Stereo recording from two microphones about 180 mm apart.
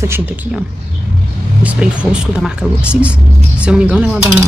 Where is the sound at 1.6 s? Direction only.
5° right (ahead or behind).